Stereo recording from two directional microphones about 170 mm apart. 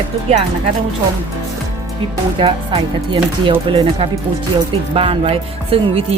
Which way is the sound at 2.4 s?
30° right (ahead or behind).